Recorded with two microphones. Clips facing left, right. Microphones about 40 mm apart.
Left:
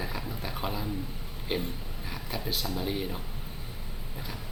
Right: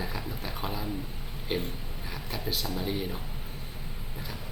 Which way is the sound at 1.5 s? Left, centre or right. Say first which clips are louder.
Even; centre.